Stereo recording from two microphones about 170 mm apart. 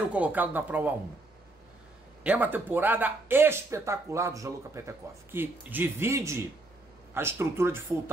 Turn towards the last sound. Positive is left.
turn(degrees=-15)  # may be behind; listen again after turning